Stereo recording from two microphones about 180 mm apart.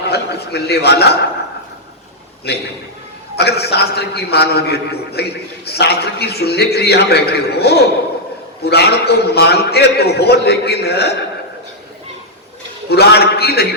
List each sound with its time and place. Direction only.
0.1 s a man's voice: 65° left (ahead or behind)
2.5 s a man's voice: 65° left (ahead or behind)
12.9 s a man's voice: 65° left (ahead or behind)